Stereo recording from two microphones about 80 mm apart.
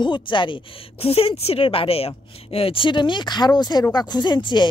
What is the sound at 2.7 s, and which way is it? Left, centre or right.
Speech, left.